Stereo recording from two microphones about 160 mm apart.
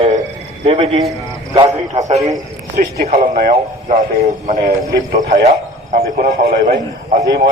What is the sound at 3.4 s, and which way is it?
Speech, 75° right (ahead or behind).